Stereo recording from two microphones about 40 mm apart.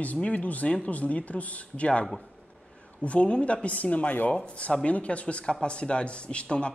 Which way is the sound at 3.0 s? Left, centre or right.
Left.